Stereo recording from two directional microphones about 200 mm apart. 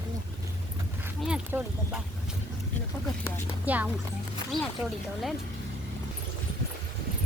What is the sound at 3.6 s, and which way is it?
Speech, 10° right (ahead or behind).